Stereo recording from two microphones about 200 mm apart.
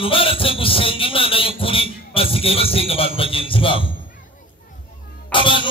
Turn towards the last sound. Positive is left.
turn(degrees=25)  # may be behind; listen again after turning